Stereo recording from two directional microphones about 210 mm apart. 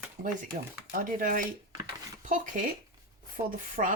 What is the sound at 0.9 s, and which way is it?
Speech, 40° right (ahead or behind).